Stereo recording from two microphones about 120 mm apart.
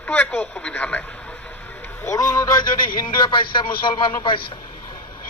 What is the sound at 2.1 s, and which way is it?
Speech, 30° left (ahead or behind).